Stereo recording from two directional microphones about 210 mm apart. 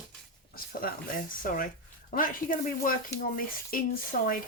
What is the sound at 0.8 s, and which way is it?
Speech, 40° left (ahead or behind).